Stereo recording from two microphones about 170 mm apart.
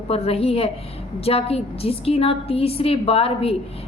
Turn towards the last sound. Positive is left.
turn(degrees=35)  # may be behind; listen again after turning